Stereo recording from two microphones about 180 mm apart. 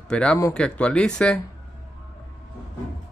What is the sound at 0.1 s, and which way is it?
Speech, 5° left (ahead or behind).